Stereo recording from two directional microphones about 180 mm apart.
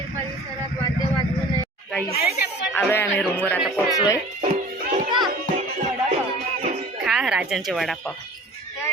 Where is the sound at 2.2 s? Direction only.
60° left (ahead or behind).